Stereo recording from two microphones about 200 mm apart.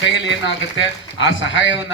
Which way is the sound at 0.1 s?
65° left (ahead or behind).